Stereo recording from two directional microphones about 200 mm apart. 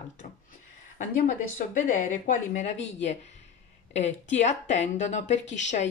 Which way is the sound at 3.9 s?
35° left (ahead or behind).